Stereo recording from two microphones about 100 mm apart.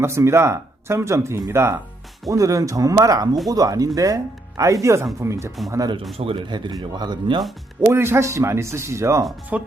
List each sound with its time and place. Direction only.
0.0 s speech: 30° right (ahead or behind)
6.1 s speech: 60° right (ahead or behind)
7.8 s speech: 25° right (ahead or behind)
9.5 s speech: 15° right (ahead or behind)